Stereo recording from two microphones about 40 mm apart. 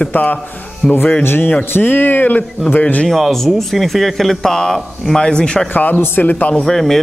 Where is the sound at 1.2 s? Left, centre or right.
Left.